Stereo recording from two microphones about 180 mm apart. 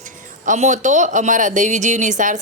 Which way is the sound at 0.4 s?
40° right (ahead or behind).